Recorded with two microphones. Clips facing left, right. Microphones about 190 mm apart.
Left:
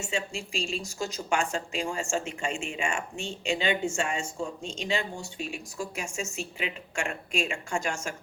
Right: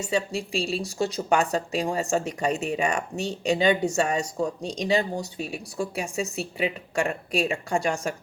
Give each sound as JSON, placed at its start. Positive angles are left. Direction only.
{"t": 0.0, "sound": "speech", "side_deg": -35}